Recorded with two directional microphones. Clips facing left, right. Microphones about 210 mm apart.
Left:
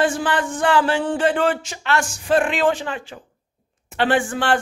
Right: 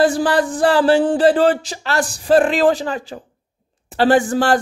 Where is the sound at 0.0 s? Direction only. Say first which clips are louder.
Right 5 dB; 35° right (ahead or behind).